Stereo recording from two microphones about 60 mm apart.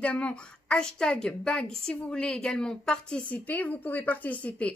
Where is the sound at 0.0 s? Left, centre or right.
Centre.